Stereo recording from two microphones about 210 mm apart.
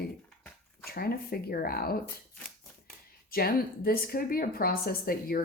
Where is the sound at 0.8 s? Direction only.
45° left (ahead or behind).